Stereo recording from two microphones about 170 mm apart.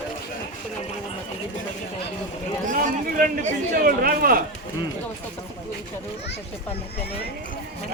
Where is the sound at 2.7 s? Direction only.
50° right (ahead or behind).